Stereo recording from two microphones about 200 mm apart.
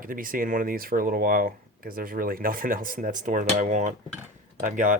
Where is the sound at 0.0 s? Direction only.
45° right (ahead or behind).